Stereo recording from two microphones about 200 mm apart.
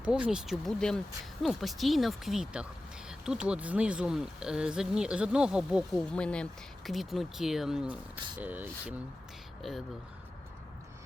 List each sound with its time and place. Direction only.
0.0 s speech: 5° right (ahead or behind)